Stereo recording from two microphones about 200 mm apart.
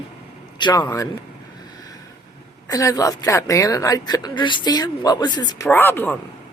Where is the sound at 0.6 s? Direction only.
20° left (ahead or behind).